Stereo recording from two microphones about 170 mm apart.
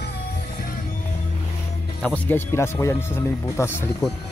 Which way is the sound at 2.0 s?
10° left (ahead or behind).